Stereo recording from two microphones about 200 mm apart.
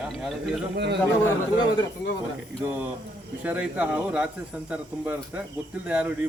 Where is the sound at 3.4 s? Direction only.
5° right (ahead or behind).